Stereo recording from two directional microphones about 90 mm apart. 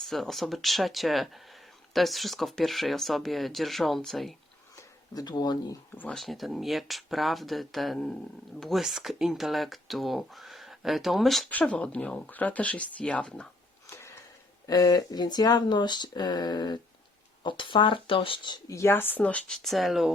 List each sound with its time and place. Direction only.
0.0 s speech: 5° left (ahead or behind)
5.2 s speech: 50° left (ahead or behind)
6.1 s speech: centre (ahead or behind)
11.4 s speech: 15° left (ahead or behind)
13.8 s sniff: 30° left (ahead or behind)
14.7 s speech: 45° left (ahead or behind)
17.4 s speech: 65° left (ahead or behind)
18.7 s speech: 30° left (ahead or behind); by 19.5 s 15° left (ahead or behind)
19.6 s speech: centre (ahead or behind)